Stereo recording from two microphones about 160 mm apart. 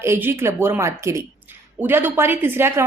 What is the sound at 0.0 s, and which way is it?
Speech, 15° right (ahead or behind).